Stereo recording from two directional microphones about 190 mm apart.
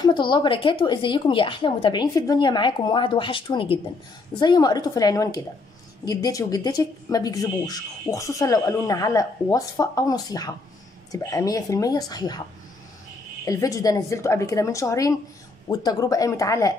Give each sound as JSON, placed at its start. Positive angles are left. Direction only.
{"t": 0.0, "sound": "speech", "side_deg": 25}
{"t": 13.5, "sound": "a woman's voice", "side_deg": 15}